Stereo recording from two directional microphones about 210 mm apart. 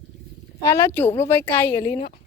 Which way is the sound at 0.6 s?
15° left (ahead or behind).